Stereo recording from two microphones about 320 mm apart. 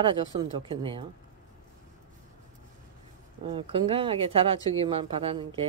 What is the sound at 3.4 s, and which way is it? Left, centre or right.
Speech, centre.